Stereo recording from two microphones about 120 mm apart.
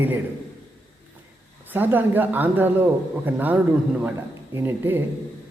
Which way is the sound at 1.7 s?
15° right (ahead or behind).